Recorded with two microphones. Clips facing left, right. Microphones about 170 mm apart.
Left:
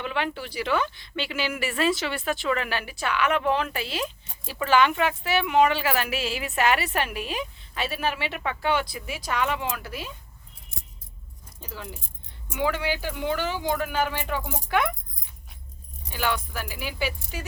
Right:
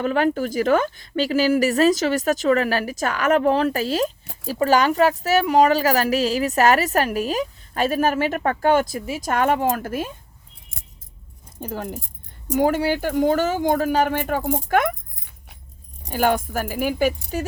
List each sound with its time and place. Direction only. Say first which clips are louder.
0.0 s a woman's voice: right 9 dB; 40° right (ahead or behind)
11.6 s speech: right 10 dB; 50° right (ahead or behind)
16.0 s speech: right 8 dB; 45° right (ahead or behind)